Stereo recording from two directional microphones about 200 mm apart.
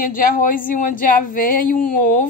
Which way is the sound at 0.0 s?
45° left (ahead or behind).